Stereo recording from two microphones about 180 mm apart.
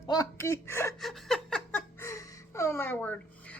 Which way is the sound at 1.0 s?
Centre (ahead or behind).